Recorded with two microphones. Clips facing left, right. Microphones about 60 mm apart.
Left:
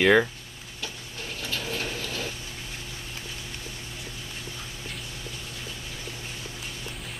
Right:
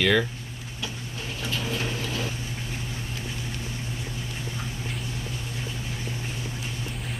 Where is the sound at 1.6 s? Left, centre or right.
Right.